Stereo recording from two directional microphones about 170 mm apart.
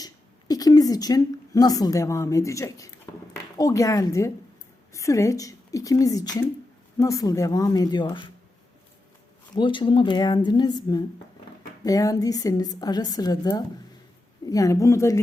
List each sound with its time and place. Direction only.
0.0 s a woman's voice: 20° left (ahead or behind)
9.6 s a woman's voice: 30° left (ahead or behind)